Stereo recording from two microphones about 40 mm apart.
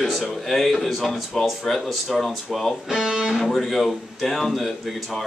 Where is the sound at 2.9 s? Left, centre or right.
Centre.